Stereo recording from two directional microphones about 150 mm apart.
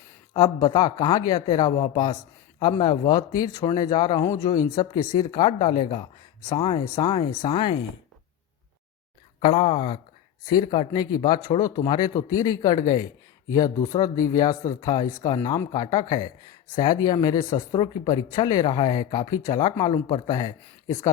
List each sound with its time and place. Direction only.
0.3 s speech: 30° left (ahead or behind)
9.4 s speech: 40° left (ahead or behind)
10.5 s speech: 30° left (ahead or behind)